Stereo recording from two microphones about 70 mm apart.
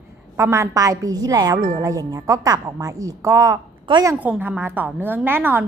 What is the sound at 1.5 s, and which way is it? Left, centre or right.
A woman's voice, right.